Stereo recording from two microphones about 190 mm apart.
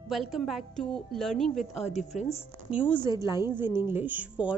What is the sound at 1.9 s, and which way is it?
Speech, 35° left (ahead or behind).